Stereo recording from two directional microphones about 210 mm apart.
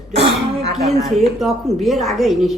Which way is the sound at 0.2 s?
50° right (ahead or behind).